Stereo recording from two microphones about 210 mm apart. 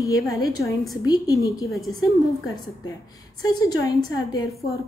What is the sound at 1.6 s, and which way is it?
Speech, centre (ahead or behind).